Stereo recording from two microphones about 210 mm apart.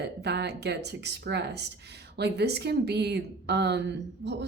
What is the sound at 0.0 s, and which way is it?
Speech, 55° right (ahead or behind).